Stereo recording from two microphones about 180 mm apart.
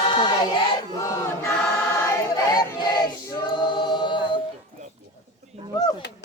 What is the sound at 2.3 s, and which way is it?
Choir, 20° left (ahead or behind).